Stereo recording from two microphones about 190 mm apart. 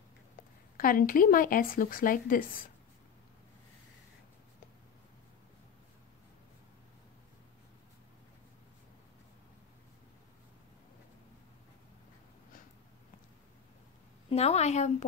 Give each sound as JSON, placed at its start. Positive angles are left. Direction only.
{"t": 0.7, "sound": "speech", "side_deg": 50}
{"t": 14.3, "sound": "a woman's voice", "side_deg": 35}